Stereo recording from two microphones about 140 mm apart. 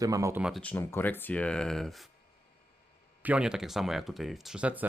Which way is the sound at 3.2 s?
10° right (ahead or behind).